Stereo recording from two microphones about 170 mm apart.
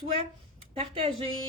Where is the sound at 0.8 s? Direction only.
30° right (ahead or behind).